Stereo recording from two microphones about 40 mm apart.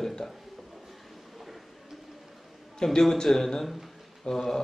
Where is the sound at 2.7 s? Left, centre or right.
Centre.